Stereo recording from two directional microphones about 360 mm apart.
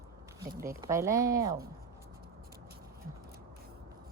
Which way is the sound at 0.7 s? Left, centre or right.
Centre.